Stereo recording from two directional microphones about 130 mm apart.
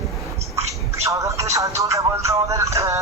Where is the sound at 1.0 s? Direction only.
25° right (ahead or behind).